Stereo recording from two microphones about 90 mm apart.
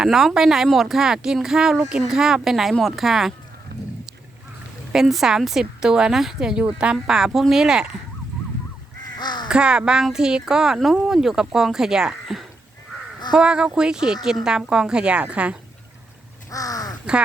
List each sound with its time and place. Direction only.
0.0 s speech: 5° right (ahead or behind)
4.9 s speech: 5° right (ahead or behind)
9.1 s crow: 55° left (ahead or behind)
9.5 s speech: 10° right (ahead or behind)
16.5 s crow: 40° left (ahead or behind)